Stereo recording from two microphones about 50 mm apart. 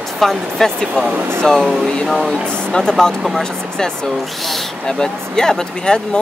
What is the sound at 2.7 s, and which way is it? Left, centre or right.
Speech, centre.